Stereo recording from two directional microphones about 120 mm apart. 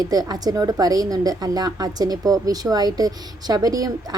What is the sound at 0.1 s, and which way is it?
A woman's voice, 30° right (ahead or behind).